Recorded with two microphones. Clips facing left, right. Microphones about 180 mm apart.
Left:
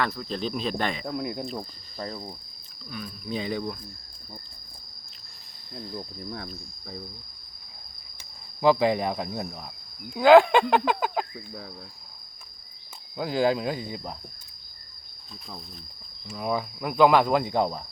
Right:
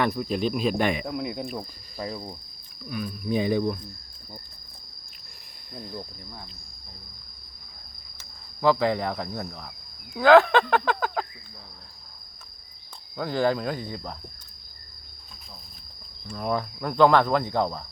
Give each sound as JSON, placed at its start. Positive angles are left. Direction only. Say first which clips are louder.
{"t": 0.0, "sound": "speech", "louder": "right 4 dB", "side_deg": -15}
{"t": 1.0, "sound": "cricket", "louder": "even", "side_deg": -5}
{"t": 2.9, "sound": "speech", "louder": "right 6 dB", "side_deg": -10}
{"t": 8.2, "sound": "speech", "louder": "left 1 dB", "side_deg": 15}
{"t": 13.1, "sound": "speech", "louder": "even", "side_deg": 10}
{"t": 16.2, "sound": "speech", "louder": "right 1 dB", "side_deg": 5}